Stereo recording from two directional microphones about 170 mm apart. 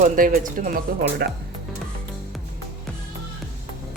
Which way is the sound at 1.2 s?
70° right (ahead or behind).